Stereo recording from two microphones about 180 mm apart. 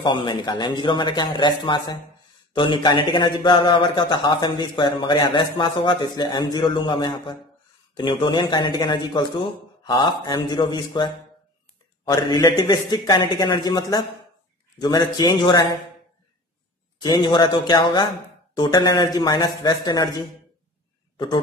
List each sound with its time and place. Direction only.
0.0 s a man's voice: 25° left (ahead or behind)
17.0 s a man's voice: 25° left (ahead or behind)